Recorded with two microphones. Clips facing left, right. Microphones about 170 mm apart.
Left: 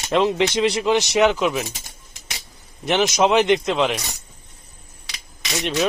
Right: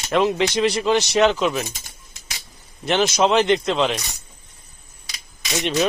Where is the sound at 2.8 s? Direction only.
15° left (ahead or behind).